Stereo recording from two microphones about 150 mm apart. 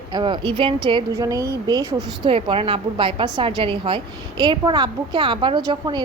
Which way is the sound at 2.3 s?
40° right (ahead or behind).